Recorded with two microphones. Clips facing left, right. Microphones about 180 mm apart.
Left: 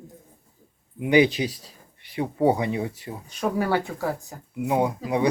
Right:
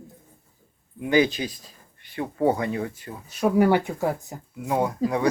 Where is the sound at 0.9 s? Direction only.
20° left (ahead or behind).